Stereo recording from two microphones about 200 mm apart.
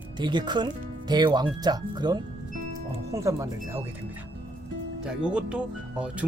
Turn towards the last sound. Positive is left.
turn(degrees=-5)  # may be behind; listen again after turning